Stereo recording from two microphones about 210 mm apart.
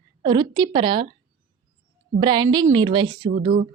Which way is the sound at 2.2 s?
20° right (ahead or behind).